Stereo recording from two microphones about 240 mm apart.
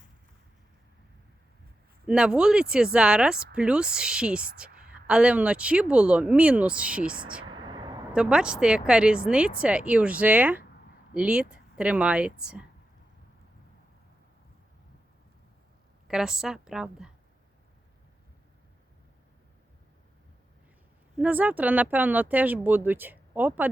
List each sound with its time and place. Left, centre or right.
2.0 s speech: centre
7.5 s a sound: centre
8.1 s speech: centre
16.0 s speech: centre
21.2 s speech: centre